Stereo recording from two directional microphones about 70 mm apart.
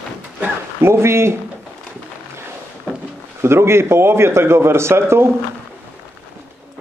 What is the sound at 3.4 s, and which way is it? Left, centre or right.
A man's voice, right.